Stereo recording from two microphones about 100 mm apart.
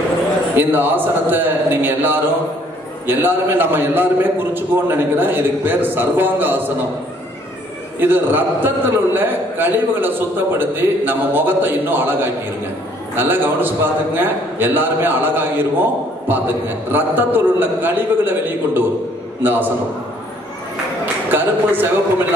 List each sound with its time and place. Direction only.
0.6 s a man's voice: 20° right (ahead or behind)
8.0 s a man's voice: 20° right (ahead or behind)
21.0 s speech: 20° right (ahead or behind)